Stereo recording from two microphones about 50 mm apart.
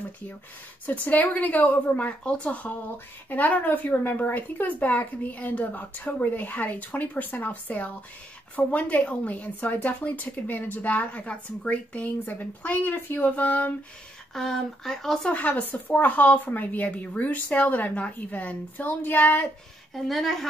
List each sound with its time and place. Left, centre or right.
0.8 s a woman's voice: left
14.3 s speech: centre
15.3 s a woman's voice: left
19.9 s a woman's voice: centre